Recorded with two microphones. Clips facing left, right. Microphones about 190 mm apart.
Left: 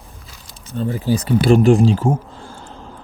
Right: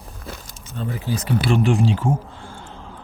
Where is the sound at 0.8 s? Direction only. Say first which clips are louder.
Left 7 dB; 35° left (ahead or behind).